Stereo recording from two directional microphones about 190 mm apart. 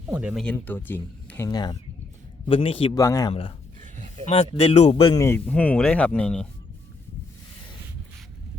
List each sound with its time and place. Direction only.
0.1 s speech: 5° right (ahead or behind)
0.4 s speech: 10° left (ahead or behind); by 3.0 s 30° left (ahead or behind)
3.0 s speech: 15° left (ahead or behind)
3.8 s a sound: 40° right (ahead or behind)
4.5 s speech: 35° left (ahead or behind)
5.1 s speech: 15° left (ahead or behind)